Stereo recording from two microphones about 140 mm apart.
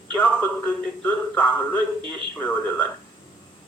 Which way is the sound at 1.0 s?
10° left (ahead or behind).